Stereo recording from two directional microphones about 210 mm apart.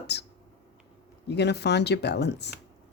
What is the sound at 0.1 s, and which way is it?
Speech, 55° left (ahead or behind).